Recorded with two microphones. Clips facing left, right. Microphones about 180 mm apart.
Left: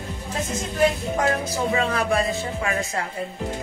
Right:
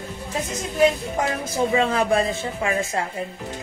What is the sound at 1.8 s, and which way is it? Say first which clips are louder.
Speech: right 3 dB; 25° right (ahead or behind).